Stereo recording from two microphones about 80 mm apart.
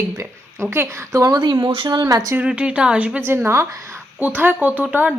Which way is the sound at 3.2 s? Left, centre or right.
Right.